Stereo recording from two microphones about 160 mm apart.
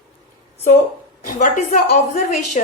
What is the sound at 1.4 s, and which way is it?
A woman's voice, 55° left (ahead or behind).